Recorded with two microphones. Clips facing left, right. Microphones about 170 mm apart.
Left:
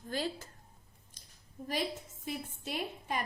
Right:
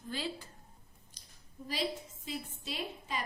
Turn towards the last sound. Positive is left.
turn(degrees=55)  # may be behind; listen again after turning